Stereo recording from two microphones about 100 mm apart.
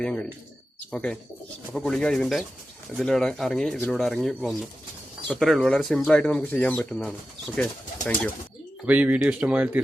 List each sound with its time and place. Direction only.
0.0 s speech: 10° left (ahead or behind)
8.9 s speech: 15° right (ahead or behind)